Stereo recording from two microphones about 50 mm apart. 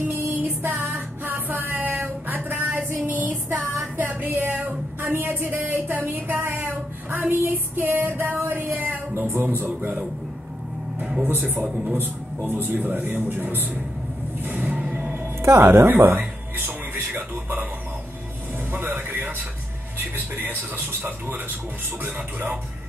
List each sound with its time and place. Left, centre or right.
0.1 s music: right
3.1 s a sound: right
9.2 s music: right
11.6 s a man's voice: right
12.0 s a man's voice: right
14.4 s vehicle: right
14.9 s a sound: right
15.4 s speech: right
15.9 s music: right
18.7 s a sound: right
20.0 s music: right
22.0 s a man's voice: right